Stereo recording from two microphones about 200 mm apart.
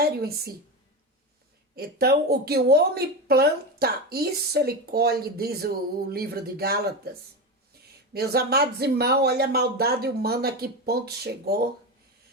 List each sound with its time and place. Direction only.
0.0 s a woman's voice: 50° right (ahead or behind)
1.7 s speech: 50° right (ahead or behind)